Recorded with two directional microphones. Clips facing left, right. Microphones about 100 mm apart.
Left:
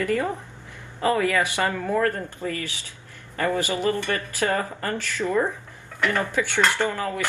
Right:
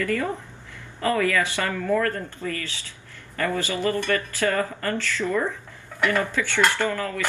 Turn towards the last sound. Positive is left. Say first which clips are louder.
# even
turn(degrees=20)  # may be behind; listen again after turning